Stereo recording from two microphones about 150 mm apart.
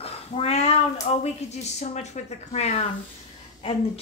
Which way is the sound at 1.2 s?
50° left (ahead or behind).